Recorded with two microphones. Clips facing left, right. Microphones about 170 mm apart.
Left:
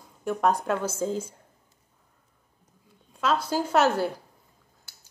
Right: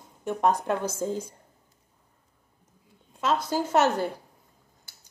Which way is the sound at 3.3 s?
15° right (ahead or behind).